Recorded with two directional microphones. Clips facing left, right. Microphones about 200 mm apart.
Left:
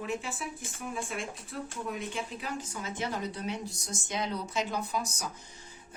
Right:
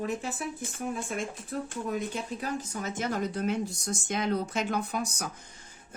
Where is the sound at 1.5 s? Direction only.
45° right (ahead or behind).